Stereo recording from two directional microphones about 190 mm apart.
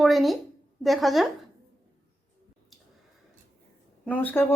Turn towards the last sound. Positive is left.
turn(degrees=10)  # may be behind; listen again after turning